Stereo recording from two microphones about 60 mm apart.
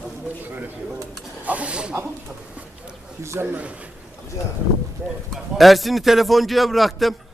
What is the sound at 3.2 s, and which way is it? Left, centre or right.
Speech, right.